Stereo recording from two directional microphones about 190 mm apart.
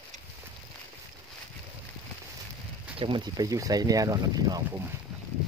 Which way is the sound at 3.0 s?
25° right (ahead or behind).